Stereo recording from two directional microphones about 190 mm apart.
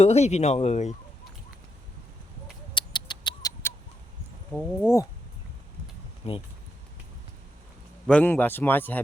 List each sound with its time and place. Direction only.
0.0 s speech: 35° left (ahead or behind)
2.7 s rodents: 25° left (ahead or behind)
4.8 s speech: 15° left (ahead or behind)
6.2 s speech: 35° left (ahead or behind)
8.0 s speech: 5° left (ahead or behind)